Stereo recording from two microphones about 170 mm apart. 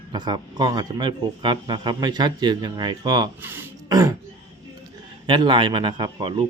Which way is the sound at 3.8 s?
20° right (ahead or behind).